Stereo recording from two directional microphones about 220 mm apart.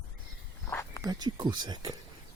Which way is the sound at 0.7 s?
10° left (ahead or behind).